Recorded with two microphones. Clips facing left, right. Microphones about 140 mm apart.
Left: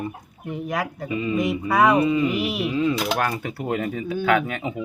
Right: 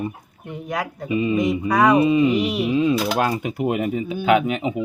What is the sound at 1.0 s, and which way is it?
Speech, 20° right (ahead or behind).